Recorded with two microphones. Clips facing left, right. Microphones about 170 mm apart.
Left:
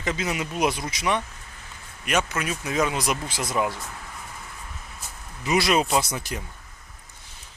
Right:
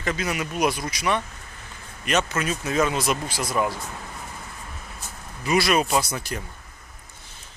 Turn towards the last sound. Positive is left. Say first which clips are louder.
# even
turn(degrees=15)  # may be behind; listen again after turning